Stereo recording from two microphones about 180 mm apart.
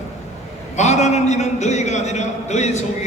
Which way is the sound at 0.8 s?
40° left (ahead or behind).